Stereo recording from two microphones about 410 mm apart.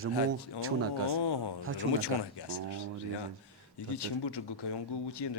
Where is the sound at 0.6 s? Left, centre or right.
Right.